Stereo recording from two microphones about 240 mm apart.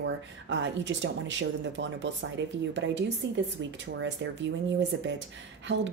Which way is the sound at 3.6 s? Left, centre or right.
Right.